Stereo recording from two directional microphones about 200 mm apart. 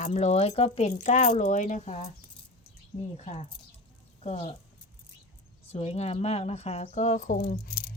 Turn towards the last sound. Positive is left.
turn(degrees=45)  # may be behind; listen again after turning